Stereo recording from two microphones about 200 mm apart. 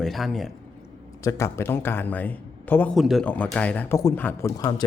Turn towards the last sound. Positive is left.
turn(degrees=20)  # may be behind; listen again after turning